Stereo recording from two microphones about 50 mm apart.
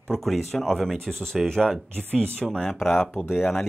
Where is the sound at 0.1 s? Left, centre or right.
Centre.